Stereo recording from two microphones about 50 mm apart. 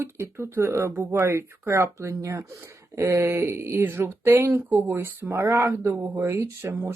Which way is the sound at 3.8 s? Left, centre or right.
Right.